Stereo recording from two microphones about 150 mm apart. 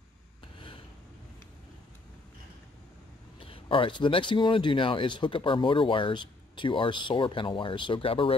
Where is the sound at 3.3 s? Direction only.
35° left (ahead or behind).